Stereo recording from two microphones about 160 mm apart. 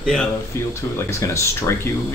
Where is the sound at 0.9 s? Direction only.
15° left (ahead or behind).